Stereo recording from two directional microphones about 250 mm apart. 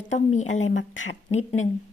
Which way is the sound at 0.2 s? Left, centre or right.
Left.